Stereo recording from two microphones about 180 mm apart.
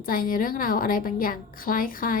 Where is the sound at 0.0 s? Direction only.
50° left (ahead or behind).